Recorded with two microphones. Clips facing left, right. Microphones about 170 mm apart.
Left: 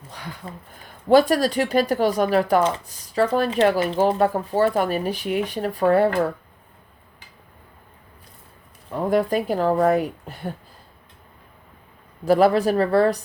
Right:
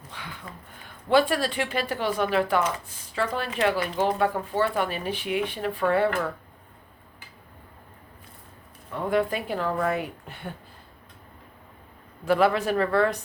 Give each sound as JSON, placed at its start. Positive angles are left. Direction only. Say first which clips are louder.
{"t": 0.1, "sound": "speech", "louder": "left 5 dB", "side_deg": 40}
{"t": 8.9, "sound": "speech", "louder": "left 4 dB", "side_deg": 40}
{"t": 12.2, "sound": "speech", "louder": "left 5 dB", "side_deg": 35}